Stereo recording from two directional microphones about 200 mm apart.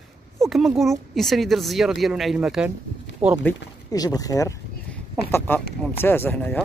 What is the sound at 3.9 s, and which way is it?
Speech, 20° left (ahead or behind).